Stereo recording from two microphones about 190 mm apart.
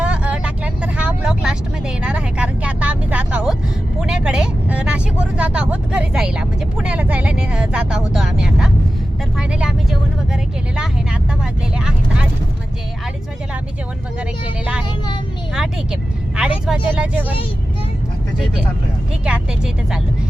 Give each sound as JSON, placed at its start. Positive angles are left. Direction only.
{"t": 0.0, "sound": "vehicle", "side_deg": -5}
{"t": 4.0, "sound": "speech", "side_deg": -5}
{"t": 11.8, "sound": "vehicle", "side_deg": -5}
{"t": 15.5, "sound": "speech", "side_deg": -5}
{"t": 19.2, "sound": "speech", "side_deg": -5}